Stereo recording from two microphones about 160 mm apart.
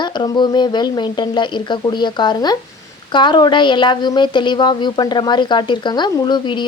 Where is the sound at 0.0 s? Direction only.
30° left (ahead or behind).